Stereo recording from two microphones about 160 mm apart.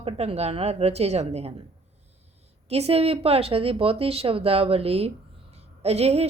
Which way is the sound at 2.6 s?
40° right (ahead or behind).